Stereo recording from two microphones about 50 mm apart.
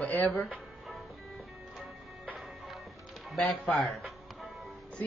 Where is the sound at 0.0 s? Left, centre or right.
Left.